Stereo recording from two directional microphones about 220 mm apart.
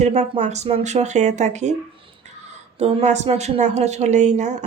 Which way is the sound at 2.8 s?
30° right (ahead or behind).